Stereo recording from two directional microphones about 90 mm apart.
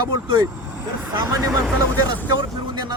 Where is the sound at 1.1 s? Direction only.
40° right (ahead or behind).